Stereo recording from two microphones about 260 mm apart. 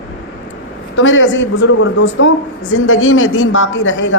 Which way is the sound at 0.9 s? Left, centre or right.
Left.